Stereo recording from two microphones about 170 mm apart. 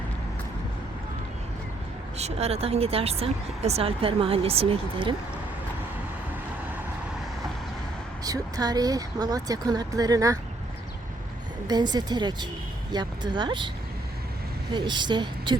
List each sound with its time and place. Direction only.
2.1 s speech: 40° right (ahead or behind)
8.2 s speech: 20° right (ahead or behind)
11.7 s speech: 25° right (ahead or behind)
14.7 s speech: 25° right (ahead or behind)